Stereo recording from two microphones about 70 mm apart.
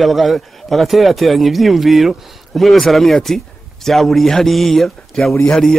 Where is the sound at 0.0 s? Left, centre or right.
Centre.